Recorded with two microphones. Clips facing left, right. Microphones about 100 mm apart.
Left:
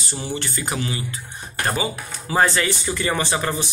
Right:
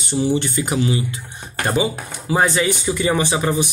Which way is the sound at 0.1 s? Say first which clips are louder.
Right 10 dB; 15° right (ahead or behind).